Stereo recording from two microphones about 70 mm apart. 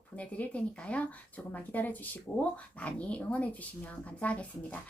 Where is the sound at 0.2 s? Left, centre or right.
Left.